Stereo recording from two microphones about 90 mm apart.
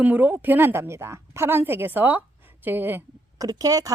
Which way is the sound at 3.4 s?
45° right (ahead or behind).